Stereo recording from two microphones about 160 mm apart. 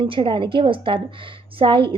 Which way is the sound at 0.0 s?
30° right (ahead or behind).